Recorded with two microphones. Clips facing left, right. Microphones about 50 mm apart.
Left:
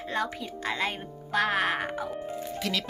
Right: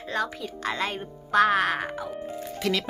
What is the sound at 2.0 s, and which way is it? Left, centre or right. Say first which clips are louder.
Speech: even; centre.